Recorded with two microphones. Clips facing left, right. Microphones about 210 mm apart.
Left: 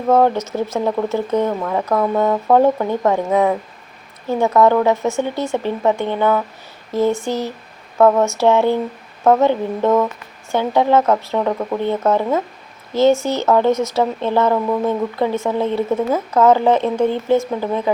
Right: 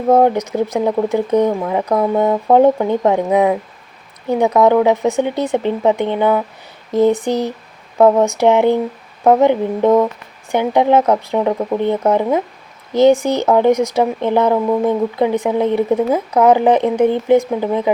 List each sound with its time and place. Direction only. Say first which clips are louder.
0.1 s speech: right 2 dB; 15° right (ahead or behind)